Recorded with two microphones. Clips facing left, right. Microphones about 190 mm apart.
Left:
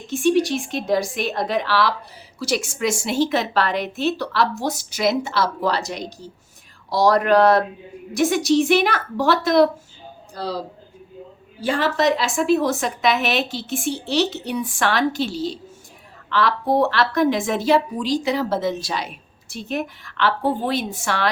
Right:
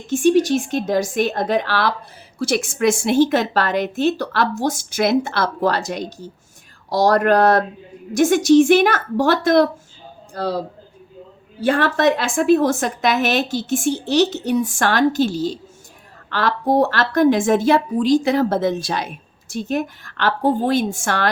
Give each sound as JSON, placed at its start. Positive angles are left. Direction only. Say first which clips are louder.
{"t": 0.1, "sound": "a woman's voice", "louder": "right 3 dB", "side_deg": -45}
{"t": 11.6, "sound": "a woman's voice", "louder": "right 3 dB", "side_deg": -55}